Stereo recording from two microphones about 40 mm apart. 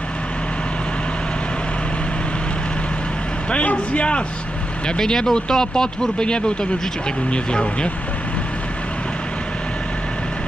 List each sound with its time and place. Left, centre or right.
3.5 s speech: left
4.9 s speech: centre